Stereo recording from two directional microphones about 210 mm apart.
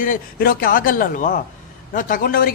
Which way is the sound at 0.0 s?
45° left (ahead or behind).